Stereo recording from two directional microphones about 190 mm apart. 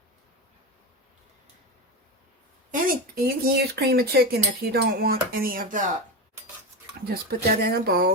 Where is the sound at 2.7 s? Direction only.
55° right (ahead or behind).